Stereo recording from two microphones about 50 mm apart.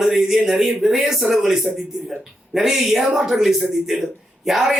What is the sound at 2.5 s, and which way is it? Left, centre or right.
A man's voice, centre.